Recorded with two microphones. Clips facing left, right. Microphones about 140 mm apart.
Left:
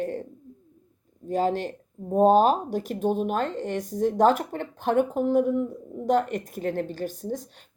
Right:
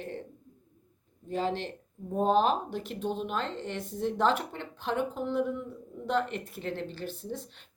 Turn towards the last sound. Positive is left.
turn(degrees=40)  # may be behind; listen again after turning